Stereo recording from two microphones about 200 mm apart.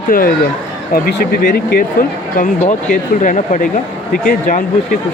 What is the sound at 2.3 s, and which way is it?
Speech, 35° left (ahead or behind).